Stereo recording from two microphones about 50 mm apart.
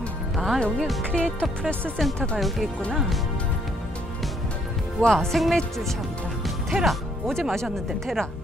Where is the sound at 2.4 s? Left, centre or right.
Centre.